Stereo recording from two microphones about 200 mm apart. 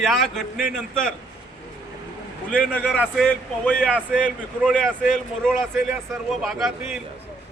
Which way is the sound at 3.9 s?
5° right (ahead or behind).